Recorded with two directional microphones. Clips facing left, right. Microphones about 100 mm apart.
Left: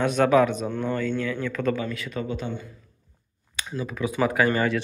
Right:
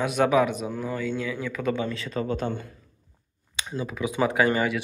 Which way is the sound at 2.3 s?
45° right (ahead or behind).